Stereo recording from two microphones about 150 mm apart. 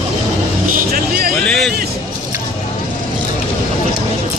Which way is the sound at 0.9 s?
75° right (ahead or behind).